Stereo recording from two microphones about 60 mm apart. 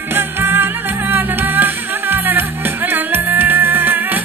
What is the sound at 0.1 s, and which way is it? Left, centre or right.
Music, right.